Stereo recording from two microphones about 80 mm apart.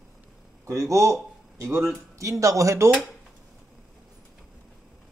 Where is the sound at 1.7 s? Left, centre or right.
Right.